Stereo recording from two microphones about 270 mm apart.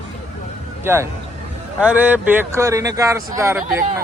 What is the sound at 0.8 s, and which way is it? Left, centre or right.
A man's voice, centre.